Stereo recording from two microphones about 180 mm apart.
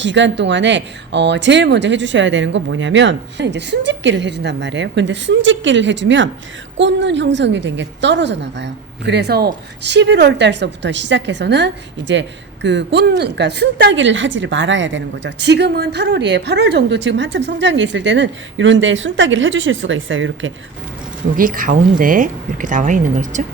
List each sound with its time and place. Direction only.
0.0 s a woman's voice: 85° right
21.3 s speech: 50° right (ahead or behind)